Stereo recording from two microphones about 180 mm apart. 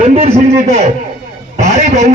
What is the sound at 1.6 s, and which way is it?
Speech, 40° right (ahead or behind).